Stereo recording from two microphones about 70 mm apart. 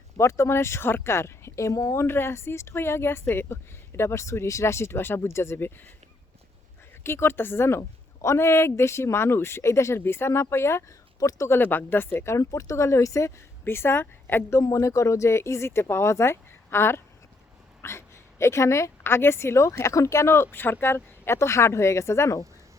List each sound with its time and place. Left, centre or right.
0.2 s a woman's voice: left
2.0 s a woman's voice: left
7.0 s a woman's voice: left
11.6 s a woman's voice: left
12.5 s speech: left
14.6 s a woman's voice: left